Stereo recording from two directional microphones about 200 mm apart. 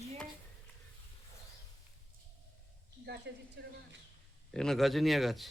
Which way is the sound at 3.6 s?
55° right (ahead or behind).